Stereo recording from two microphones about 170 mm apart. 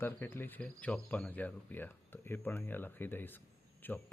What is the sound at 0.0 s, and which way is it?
Speech, 15° left (ahead or behind).